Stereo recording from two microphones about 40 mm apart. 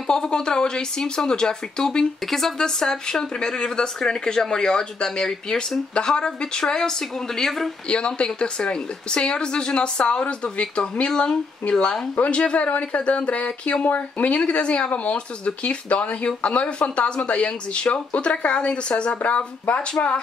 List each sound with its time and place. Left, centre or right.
0.0 s speech: left
7.9 s speech: left
14.3 s speech: left